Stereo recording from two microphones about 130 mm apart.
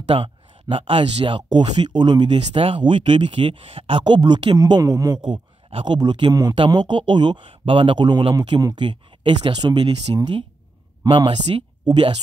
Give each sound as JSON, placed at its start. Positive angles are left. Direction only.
{"t": 0.0, "sound": "speech", "side_deg": -40}